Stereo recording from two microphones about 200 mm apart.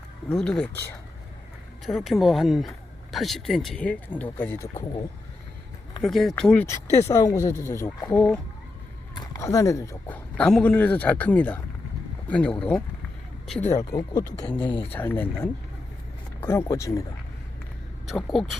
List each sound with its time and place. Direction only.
0.3 s speech: 5° left (ahead or behind)
1.8 s speech: centre (ahead or behind)
6.0 s speech: centre (ahead or behind); by 14.3 s 20° left (ahead or behind)
14.4 s speech: 5° left (ahead or behind)
14.7 s speech: 25° left (ahead or behind)
14.9 s speech: 10° left (ahead or behind)
18.0 s speech: centre (ahead or behind)